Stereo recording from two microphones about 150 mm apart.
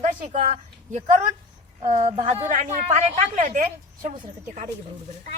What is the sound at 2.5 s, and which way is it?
Speech, 55° right (ahead or behind).